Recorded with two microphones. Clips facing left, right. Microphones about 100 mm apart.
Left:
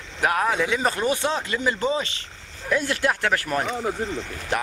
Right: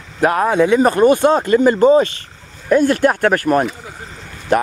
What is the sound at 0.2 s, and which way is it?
Speech, 40° right (ahead or behind).